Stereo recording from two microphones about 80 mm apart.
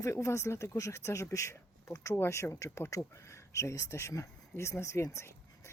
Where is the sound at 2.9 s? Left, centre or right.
Left.